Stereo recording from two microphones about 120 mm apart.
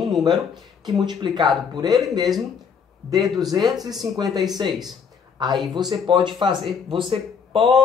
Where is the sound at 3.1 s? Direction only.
35° right (ahead or behind).